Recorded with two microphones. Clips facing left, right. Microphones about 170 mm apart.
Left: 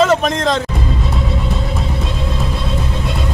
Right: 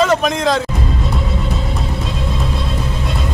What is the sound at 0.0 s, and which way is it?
Speech, centre (ahead or behind).